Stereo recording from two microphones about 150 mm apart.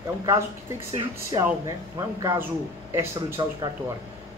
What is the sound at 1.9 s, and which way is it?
Speech, 15° right (ahead or behind).